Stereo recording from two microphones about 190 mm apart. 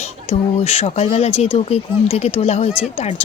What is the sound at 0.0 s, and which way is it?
Speech, 35° left (ahead or behind).